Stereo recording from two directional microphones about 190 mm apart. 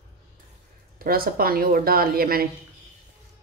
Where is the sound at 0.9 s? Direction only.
50° right (ahead or behind).